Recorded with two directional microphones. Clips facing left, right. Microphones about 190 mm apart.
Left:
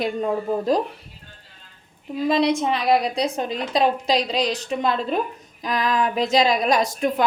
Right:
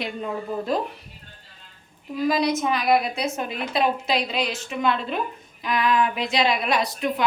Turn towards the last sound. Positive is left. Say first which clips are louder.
# left 3 dB
turn(degrees=45)  # may be behind; listen again after turning